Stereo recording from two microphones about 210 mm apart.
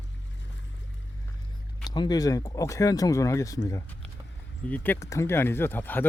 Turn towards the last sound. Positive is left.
turn(degrees=10)  # may be behind; listen again after turning